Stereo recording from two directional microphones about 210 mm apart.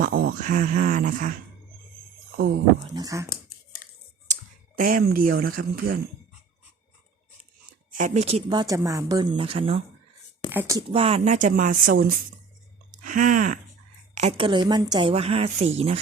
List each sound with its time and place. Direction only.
0.0 s speech: 45° right (ahead or behind)
2.9 s speech: 15° right (ahead or behind)
4.3 s speech: 40° right (ahead or behind)
7.9 s speech: 35° right (ahead or behind)
10.5 s speech: 10° right (ahead or behind)
10.8 s speech: 25° right (ahead or behind)